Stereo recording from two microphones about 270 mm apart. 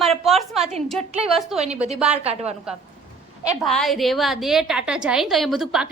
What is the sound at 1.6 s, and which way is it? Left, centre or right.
Speech, right.